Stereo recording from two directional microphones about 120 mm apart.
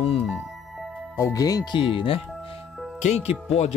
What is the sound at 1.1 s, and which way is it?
Speech, 30° left (ahead or behind).